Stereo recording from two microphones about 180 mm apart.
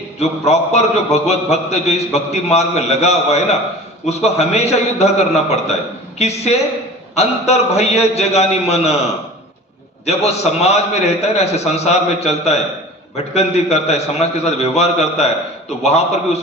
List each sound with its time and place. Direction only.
0.2 s a man's voice: 35° left (ahead or behind)
10.1 s a man's voice: 35° left (ahead or behind)